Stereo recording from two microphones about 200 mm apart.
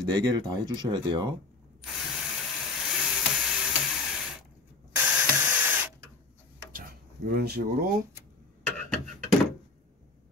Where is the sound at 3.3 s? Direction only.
Centre (ahead or behind).